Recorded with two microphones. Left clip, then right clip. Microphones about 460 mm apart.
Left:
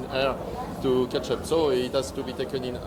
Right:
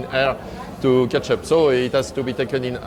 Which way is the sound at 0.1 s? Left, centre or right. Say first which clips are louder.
Right 6 dB; right.